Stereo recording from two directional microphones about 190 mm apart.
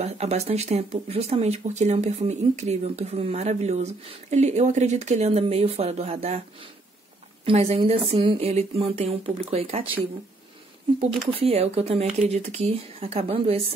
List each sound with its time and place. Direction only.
0.0 s speech: 35° right (ahead or behind)
11.0 s speech: 30° right (ahead or behind)